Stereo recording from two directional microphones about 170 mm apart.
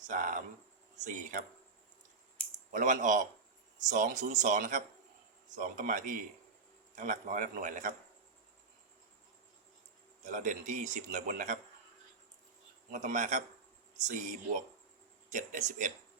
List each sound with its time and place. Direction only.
0.1 s a man's voice: 50° right (ahead or behind)
2.7 s a man's voice: 50° right (ahead or behind)
10.2 s a man's voice: 45° right (ahead or behind)
12.9 s a man's voice: 45° right (ahead or behind)